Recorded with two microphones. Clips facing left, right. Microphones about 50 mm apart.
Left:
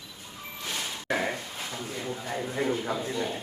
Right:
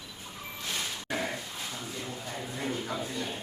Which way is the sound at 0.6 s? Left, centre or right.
Centre.